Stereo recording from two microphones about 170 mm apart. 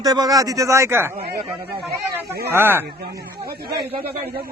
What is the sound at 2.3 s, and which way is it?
Speech, 15° right (ahead or behind).